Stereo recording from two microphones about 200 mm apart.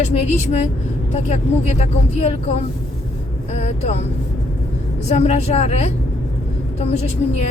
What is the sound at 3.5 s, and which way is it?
Speech, 35° left (ahead or behind).